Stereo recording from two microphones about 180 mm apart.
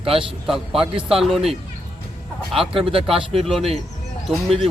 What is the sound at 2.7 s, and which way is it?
Speech, 30° right (ahead or behind).